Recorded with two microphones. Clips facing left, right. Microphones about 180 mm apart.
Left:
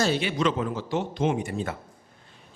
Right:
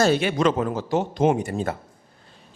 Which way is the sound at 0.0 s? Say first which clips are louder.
Right 5 dB; 50° right (ahead or behind).